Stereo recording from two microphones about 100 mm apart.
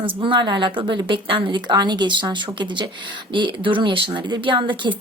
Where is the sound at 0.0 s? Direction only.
60° right (ahead or behind).